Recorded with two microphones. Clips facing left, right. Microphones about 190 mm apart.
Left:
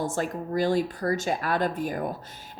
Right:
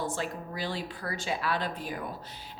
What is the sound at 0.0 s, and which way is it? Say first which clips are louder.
A woman's voice: left 5 dB; 45° left (ahead or behind).